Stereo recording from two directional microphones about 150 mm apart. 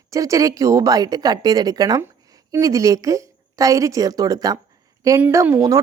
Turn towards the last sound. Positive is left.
turn(degrees=-15)  # may be behind; listen again after turning